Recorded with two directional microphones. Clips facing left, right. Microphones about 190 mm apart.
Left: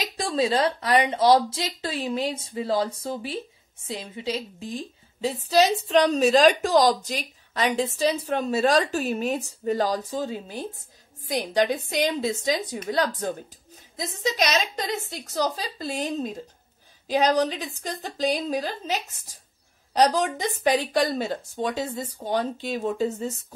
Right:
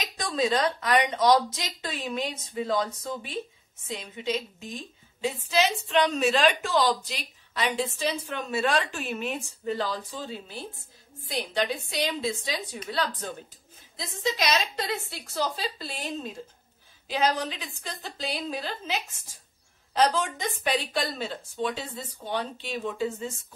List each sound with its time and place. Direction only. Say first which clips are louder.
0.2 s a woman's voice: left 3 dB; 30° left (ahead or behind)
12.1 s a woman's voice: left 5 dB; 40° left (ahead or behind)